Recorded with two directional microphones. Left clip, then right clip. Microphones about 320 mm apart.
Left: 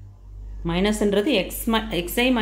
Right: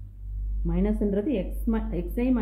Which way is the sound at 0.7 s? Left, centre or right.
Centre.